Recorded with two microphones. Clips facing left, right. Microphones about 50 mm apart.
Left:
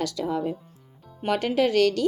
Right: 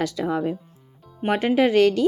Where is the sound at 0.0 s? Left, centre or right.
Right.